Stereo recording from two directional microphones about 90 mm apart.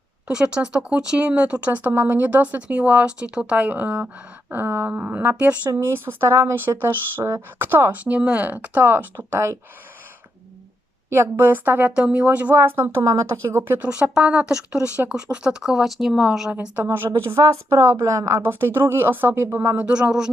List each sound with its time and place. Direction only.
0.3 s speech: 10° right (ahead or behind); by 9.6 s 25° right (ahead or behind)
11.1 s a woman's voice: 25° right (ahead or behind)
13.6 s speech: 20° right (ahead or behind); by 16.5 s 5° right (ahead or behind)
16.7 s speech: 25° right (ahead or behind)
17.3 s a woman's voice: 35° right (ahead or behind)
18.7 s speech: 25° right (ahead or behind)
19.8 s speech: 10° right (ahead or behind)